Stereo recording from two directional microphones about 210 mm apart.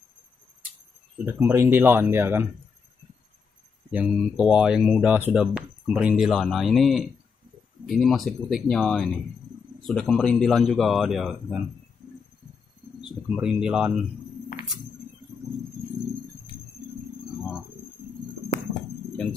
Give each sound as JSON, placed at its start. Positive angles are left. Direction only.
{"t": 1.2, "sound": "speech", "side_deg": -10}
{"t": 3.9, "sound": "speech", "side_deg": -5}
{"t": 13.0, "sound": "speech", "side_deg": -5}
{"t": 18.5, "sound": "music", "side_deg": 35}